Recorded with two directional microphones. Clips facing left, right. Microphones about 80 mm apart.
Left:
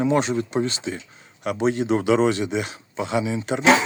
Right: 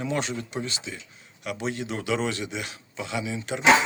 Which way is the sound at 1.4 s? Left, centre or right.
Left.